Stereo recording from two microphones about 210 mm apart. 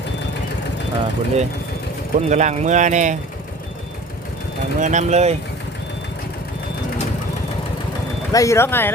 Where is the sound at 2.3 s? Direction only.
35° right (ahead or behind).